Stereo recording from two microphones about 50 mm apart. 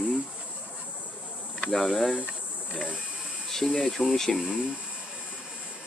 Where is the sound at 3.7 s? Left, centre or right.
Centre.